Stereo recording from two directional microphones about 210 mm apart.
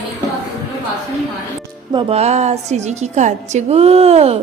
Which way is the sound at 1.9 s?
25° right (ahead or behind).